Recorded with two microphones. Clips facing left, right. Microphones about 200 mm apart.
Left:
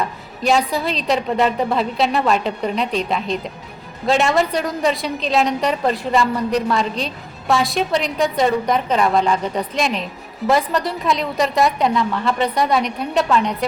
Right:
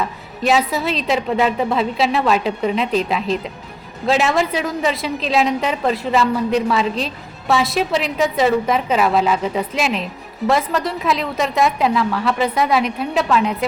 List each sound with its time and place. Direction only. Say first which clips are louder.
0.0 s a woman's voice: right 1 dB; centre (ahead or behind)